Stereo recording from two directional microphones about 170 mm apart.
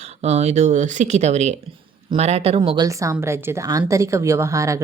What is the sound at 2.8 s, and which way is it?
A woman's voice, 15° right (ahead or behind).